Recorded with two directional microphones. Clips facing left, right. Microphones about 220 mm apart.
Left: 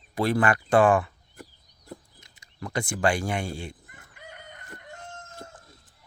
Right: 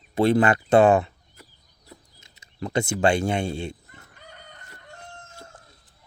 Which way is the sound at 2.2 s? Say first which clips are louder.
Right 10 dB; 25° right (ahead or behind).